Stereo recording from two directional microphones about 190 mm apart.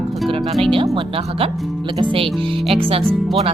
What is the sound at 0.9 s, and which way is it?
Speech, 30° right (ahead or behind).